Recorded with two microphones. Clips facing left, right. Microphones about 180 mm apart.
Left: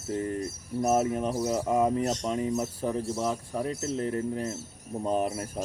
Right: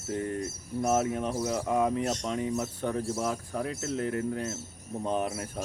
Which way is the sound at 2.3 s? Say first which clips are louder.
Left 2 dB; 35° left (ahead or behind).